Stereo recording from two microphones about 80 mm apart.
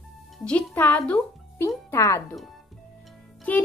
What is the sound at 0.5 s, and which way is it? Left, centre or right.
Speech, centre.